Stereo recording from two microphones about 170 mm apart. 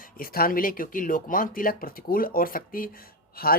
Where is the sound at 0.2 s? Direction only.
60° left (ahead or behind).